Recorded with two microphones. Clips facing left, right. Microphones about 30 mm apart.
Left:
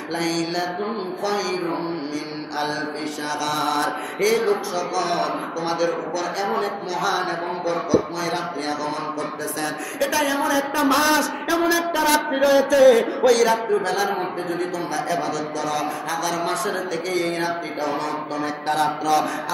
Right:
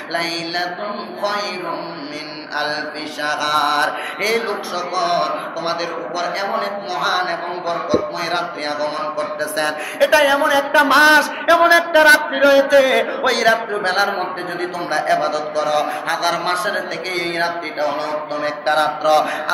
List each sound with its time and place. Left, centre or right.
0.1 s mantra: right
3.3 s mantra: right
4.3 s speech: right
12.3 s speech: right